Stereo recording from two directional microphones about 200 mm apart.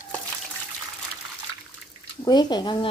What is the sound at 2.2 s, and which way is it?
Speech, 20° left (ahead or behind).